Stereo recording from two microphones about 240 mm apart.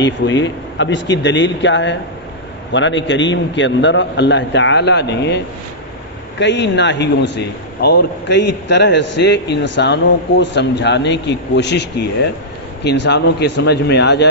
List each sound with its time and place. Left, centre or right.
0.0 s a man's voice: left
6.4 s a man's voice: left
12.8 s a man's voice: left